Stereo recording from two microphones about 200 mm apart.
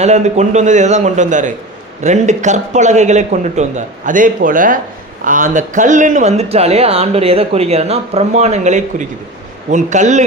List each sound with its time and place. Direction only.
0.0 s speech: 35° right (ahead or behind)